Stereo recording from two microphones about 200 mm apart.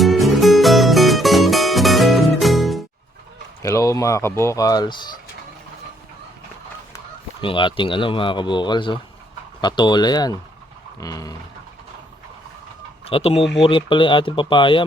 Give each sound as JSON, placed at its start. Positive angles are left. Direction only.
{"t": 0.0, "sound": "music", "side_deg": 0}
{"t": 3.6, "sound": "speech", "side_deg": 15}
{"t": 7.4, "sound": "speech", "side_deg": 25}
{"t": 13.1, "sound": "speech", "side_deg": 30}